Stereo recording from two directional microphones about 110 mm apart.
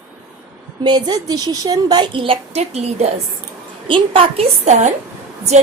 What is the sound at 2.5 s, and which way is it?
Speech, 80° right.